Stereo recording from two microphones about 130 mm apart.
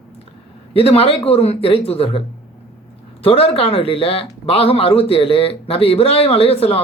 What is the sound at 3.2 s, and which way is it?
Speech, 45° left (ahead or behind).